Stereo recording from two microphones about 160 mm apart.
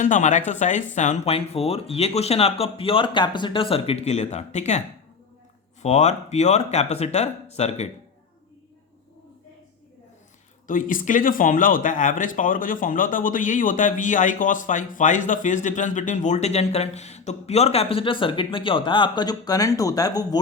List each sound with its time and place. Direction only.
0.0 s speech: 50° left (ahead or behind)
5.8 s speech: 45° left (ahead or behind)
10.7 s speech: 55° left (ahead or behind); by 20.4 s 25° left (ahead or behind)